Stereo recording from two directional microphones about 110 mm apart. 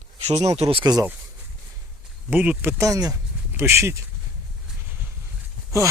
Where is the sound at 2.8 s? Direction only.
30° right (ahead or behind).